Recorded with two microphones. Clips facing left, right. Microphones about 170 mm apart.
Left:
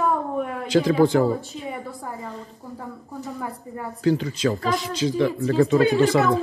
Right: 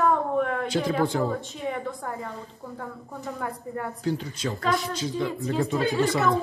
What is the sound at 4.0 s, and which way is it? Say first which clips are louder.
Speech: left 10 dB; 90° left.